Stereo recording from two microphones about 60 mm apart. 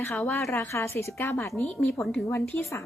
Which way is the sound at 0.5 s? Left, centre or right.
Left.